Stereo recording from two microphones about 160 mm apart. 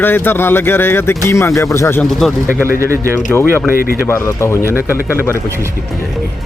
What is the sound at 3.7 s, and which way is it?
Speech, 65° left (ahead or behind).